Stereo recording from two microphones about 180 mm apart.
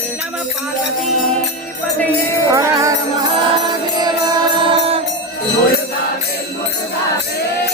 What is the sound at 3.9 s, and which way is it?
Music, 20° right (ahead or behind).